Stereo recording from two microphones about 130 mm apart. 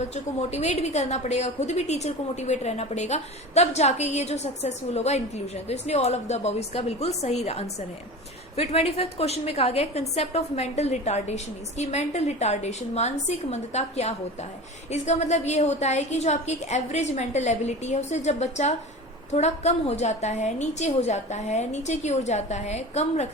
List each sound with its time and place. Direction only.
0.1 s a woman's voice: 55° left (ahead or behind)